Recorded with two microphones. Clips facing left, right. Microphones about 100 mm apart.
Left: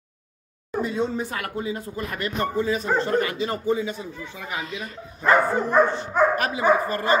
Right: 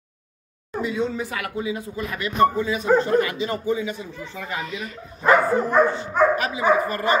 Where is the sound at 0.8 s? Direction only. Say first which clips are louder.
Right 2 dB; 35° left (ahead or behind).